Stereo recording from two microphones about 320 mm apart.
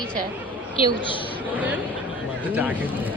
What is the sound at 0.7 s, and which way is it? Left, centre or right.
Speech, centre.